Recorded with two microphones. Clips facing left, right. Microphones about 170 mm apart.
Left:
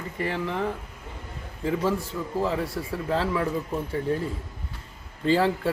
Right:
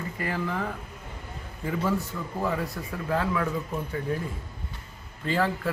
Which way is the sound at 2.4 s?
25° left (ahead or behind).